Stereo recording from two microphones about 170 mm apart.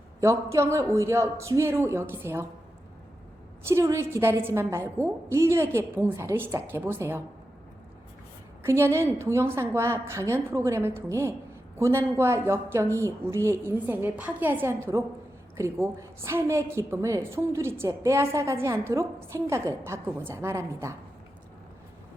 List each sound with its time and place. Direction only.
0.2 s a woman's voice: 15° right (ahead or behind)
3.6 s a woman's voice: 15° right (ahead or behind)
8.6 s a woman's voice: 15° right (ahead or behind)